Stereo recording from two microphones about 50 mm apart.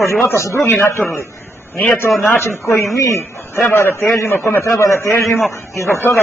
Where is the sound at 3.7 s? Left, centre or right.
Left.